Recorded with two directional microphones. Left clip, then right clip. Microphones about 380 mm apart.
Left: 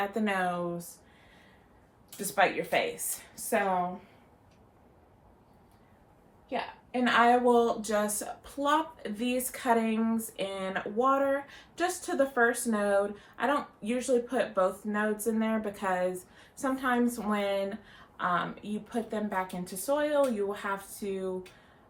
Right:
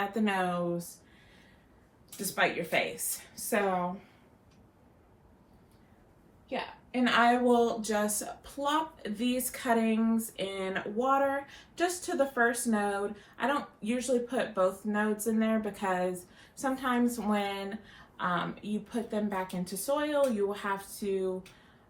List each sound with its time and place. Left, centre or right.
0.1 s speech: centre
2.0 s speech: centre
6.5 s a woman's voice: centre